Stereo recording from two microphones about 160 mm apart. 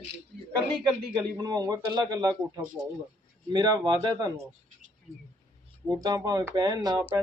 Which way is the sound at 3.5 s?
25° right (ahead or behind).